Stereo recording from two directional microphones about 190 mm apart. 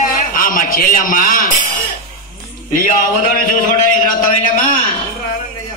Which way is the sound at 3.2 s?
45° left (ahead or behind).